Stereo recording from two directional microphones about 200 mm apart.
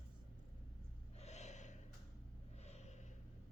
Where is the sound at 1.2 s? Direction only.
35° left (ahead or behind).